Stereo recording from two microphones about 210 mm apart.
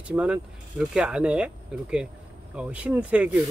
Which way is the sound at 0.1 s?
5° right (ahead or behind).